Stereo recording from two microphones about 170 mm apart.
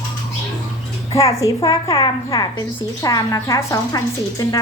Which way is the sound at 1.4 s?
25° left (ahead or behind).